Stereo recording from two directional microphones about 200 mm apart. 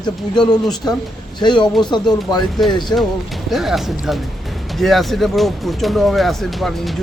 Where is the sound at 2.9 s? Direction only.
10° left (ahead or behind).